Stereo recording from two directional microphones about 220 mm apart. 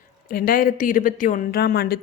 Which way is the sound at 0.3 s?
40° left (ahead or behind).